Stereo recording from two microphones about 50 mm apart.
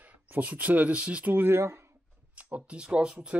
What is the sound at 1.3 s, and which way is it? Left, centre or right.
Speech, right.